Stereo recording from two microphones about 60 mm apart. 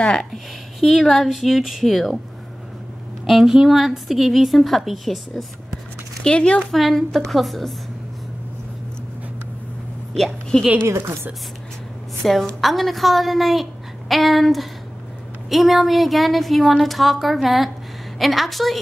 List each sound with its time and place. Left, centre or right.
0.0 s speech: centre
0.3 s a woman's voice: centre
3.3 s a woman's voice: centre
6.2 s speech: centre
6.7 s a woman's voice: centre
10.1 s a woman's voice: centre
12.2 s a woman's voice: centre